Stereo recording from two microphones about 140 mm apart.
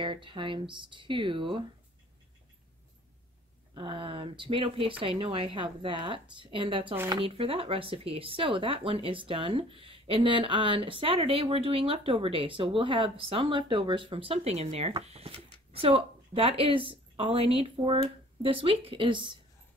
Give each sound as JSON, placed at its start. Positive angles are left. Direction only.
{"t": 0.0, "sound": "speech", "side_deg": -35}
{"t": 3.7, "sound": "speech", "side_deg": -35}